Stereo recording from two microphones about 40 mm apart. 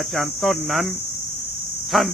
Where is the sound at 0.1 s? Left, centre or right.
Centre.